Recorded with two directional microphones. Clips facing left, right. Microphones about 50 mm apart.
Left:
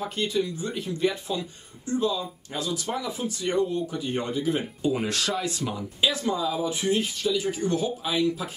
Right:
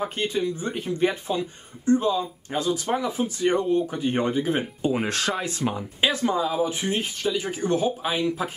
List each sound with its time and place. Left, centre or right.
0.0 s speech: right